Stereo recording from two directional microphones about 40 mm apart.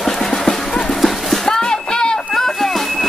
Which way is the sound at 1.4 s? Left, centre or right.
Centre.